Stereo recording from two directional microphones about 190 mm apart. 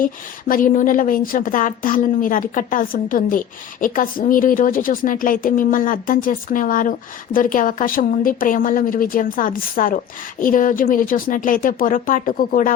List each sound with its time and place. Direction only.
0.0 s a woman's voice: 45° left (ahead or behind)